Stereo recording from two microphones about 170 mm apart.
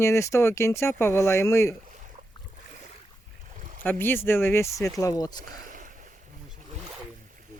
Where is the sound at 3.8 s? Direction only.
10° left (ahead or behind).